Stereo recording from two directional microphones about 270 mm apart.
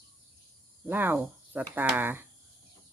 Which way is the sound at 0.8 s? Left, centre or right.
Centre.